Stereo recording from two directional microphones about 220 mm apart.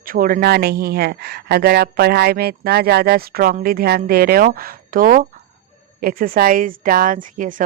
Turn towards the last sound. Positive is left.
turn(degrees=-35)  # may be behind; listen again after turning